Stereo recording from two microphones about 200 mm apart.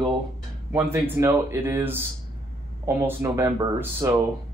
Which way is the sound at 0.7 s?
15° right (ahead or behind).